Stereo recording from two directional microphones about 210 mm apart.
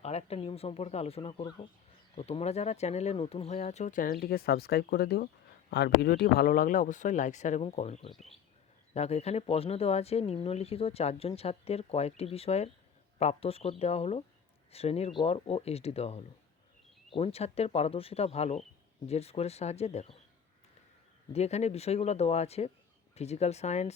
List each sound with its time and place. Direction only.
0.0 s speech: 30° left (ahead or behind)
21.3 s speech: 30° left (ahead or behind)